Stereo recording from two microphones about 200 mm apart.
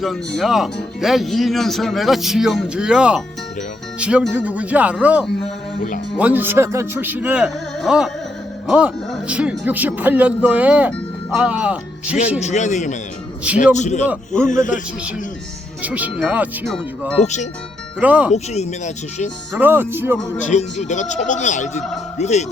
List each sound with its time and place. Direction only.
0.0 s speech: centre (ahead or behind)
12.4 s speech: 35° left (ahead or behind)
15.8 s speech: 5° right (ahead or behind)
17.2 s speech: 35° left (ahead or behind)
18.0 s speech: 5° right (ahead or behind)
18.3 s speech: 35° left (ahead or behind)
19.5 s speech: 10° right (ahead or behind)
20.4 s speech: 35° left (ahead or behind)